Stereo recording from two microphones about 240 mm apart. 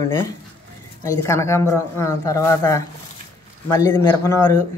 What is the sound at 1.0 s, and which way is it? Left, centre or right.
A man's voice, centre.